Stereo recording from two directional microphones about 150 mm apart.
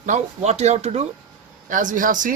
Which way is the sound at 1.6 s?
60° right (ahead or behind).